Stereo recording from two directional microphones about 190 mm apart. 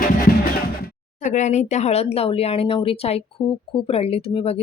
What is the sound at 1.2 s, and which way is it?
Speech, 40° left (ahead or behind).